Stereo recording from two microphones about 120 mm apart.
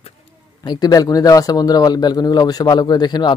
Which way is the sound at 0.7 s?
35° left (ahead or behind).